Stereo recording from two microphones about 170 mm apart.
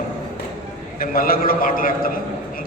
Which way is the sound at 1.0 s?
60° left (ahead or behind).